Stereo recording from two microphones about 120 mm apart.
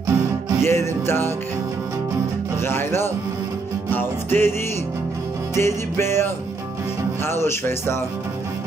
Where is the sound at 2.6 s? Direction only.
20° left (ahead or behind).